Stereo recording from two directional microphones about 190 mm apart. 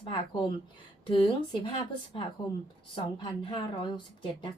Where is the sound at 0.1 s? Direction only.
25° left (ahead or behind).